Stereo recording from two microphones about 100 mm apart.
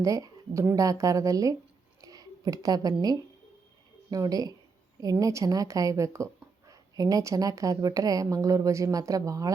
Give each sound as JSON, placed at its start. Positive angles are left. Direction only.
{"t": 0.0, "sound": "a woman's voice", "side_deg": -35}
{"t": 2.0, "sound": "a sound", "side_deg": -40}
{"t": 4.1, "sound": "a woman's voice", "side_deg": -40}